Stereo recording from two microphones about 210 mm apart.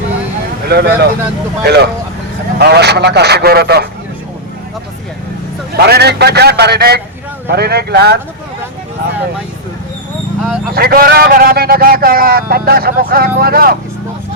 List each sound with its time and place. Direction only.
0.7 s a man's voice: 50° right (ahead or behind)
5.7 s a man's voice: 50° right (ahead or behind)
10.8 s a man's voice: 45° right (ahead or behind)